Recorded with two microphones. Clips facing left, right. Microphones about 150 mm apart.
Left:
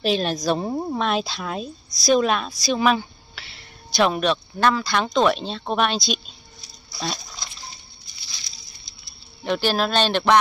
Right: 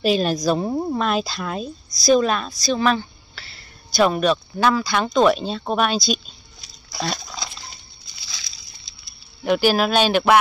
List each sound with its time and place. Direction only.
0.0 s a woman's voice: 5° right (ahead or behind)
8.3 s a sound: 90° right
9.4 s speech: 10° right (ahead or behind)